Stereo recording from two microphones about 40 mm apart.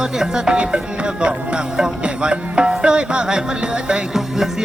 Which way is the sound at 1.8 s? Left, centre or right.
Right.